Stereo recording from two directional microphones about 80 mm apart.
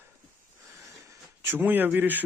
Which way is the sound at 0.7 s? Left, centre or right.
Right.